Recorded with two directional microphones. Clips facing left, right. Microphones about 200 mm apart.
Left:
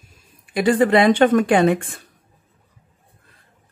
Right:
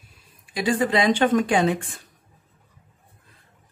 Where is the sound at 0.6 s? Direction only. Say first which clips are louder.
Left 6 dB; 60° left (ahead or behind).